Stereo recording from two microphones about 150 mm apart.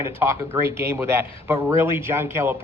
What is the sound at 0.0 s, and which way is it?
Speech, 15° right (ahead or behind).